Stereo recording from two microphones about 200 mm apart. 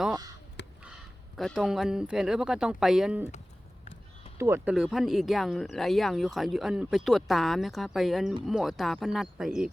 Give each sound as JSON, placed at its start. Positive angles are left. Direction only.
{"t": 0.6, "sound": "a sound", "side_deg": 60}
{"t": 1.4, "sound": "speech", "side_deg": 0}
{"t": 4.4, "sound": "speech", "side_deg": -10}